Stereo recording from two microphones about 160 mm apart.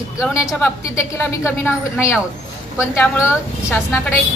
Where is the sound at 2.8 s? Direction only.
10° left (ahead or behind).